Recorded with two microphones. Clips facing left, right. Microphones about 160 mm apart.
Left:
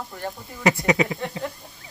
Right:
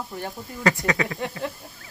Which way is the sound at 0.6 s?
20° left (ahead or behind).